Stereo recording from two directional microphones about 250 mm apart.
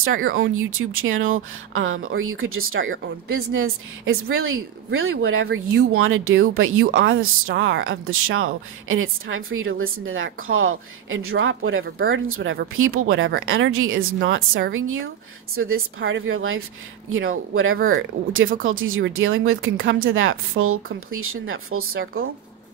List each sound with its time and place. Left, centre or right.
0.0 s a woman's voice: right